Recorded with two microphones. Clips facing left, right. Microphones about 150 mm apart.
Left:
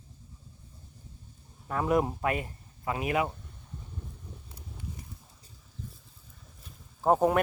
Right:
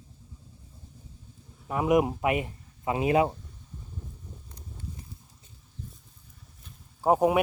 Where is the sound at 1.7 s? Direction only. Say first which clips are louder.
Right 3 dB; 15° right (ahead or behind).